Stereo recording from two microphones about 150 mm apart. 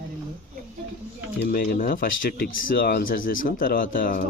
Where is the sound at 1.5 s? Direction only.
75° left (ahead or behind).